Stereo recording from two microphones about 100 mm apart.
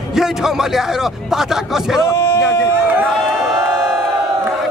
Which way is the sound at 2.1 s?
30° left (ahead or behind).